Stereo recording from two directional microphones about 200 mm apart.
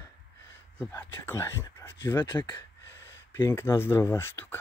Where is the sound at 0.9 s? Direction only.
15° left (ahead or behind).